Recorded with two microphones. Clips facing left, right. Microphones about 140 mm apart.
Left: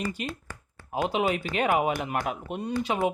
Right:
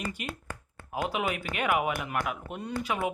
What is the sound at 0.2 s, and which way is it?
Speech, 30° left (ahead or behind).